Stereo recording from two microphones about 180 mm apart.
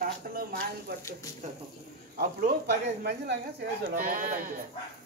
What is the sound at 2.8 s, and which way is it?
Speech, 70° right (ahead or behind).